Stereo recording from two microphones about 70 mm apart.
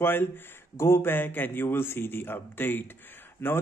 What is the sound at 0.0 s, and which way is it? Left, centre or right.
Speech, left.